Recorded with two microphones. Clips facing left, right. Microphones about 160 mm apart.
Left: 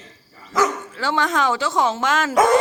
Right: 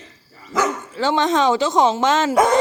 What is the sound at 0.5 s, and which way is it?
Speech, 20° right (ahead or behind).